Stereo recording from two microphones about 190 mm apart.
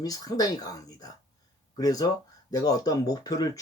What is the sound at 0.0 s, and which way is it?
Speech, 20° left (ahead or behind).